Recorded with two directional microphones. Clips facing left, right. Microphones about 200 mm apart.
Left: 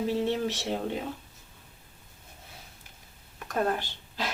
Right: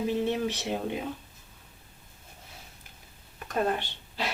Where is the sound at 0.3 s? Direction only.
15° right (ahead or behind).